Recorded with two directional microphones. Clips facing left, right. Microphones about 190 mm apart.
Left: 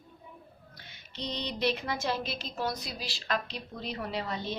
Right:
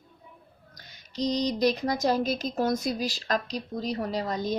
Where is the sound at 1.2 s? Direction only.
40° right (ahead or behind).